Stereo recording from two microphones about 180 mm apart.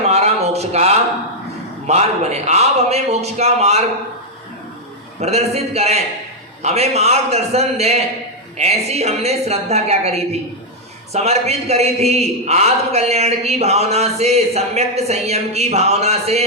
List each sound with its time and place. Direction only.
0.0 s a sound: 35° right (ahead or behind)
1.9 s a man's voice: 35° right (ahead or behind)
5.2 s a man's voice: 35° right (ahead or behind)